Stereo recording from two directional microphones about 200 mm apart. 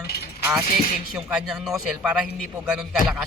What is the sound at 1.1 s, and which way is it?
Speech, 5° right (ahead or behind).